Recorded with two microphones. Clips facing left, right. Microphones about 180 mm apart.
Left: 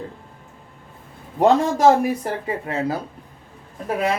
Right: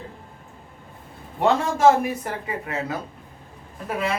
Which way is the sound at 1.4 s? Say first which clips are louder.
Left 4 dB; 35° left (ahead or behind).